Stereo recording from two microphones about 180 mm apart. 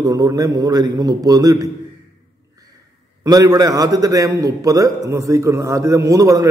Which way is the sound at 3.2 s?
20° right (ahead or behind).